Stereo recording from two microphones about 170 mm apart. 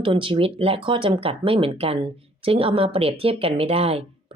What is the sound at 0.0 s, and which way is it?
Speech, 30° right (ahead or behind).